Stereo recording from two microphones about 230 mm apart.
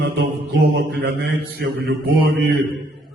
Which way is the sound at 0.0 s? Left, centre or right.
Right.